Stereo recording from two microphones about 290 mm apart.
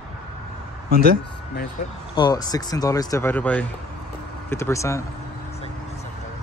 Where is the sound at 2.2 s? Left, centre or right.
Centre.